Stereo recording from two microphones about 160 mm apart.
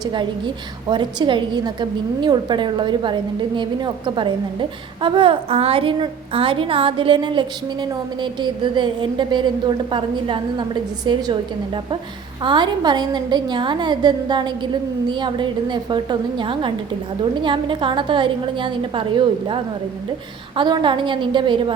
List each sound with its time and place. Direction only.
0.0 s a woman's voice: 30° right (ahead or behind)